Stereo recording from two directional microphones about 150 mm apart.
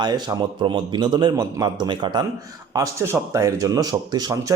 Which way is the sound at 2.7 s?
20° right (ahead or behind).